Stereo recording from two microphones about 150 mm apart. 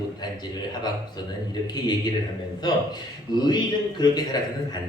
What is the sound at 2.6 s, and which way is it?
A man's voice, 30° left (ahead or behind).